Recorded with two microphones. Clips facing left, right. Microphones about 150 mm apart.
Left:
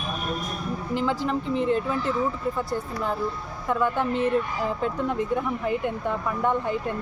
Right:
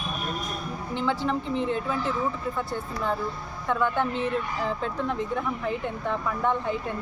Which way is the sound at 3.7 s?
10° left (ahead or behind).